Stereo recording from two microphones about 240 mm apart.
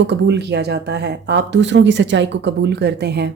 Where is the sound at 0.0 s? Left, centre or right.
Right.